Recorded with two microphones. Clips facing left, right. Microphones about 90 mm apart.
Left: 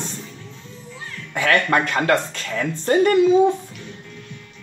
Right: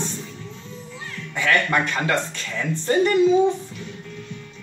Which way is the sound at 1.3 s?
55° left (ahead or behind).